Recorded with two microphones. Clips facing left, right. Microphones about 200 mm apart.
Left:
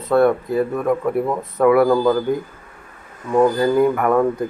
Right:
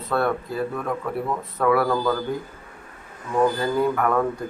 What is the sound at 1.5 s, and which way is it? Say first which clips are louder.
Speech: left 7 dB; 20° left (ahead or behind).